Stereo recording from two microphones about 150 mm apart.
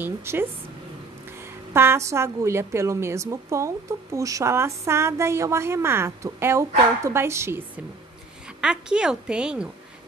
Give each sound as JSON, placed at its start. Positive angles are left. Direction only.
{"t": 0.0, "sound": "a woman's voice", "side_deg": -15}
{"t": 1.7, "sound": "a woman's voice", "side_deg": -15}